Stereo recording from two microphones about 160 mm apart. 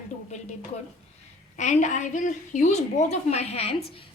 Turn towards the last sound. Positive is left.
turn(degrees=40)  # may be behind; listen again after turning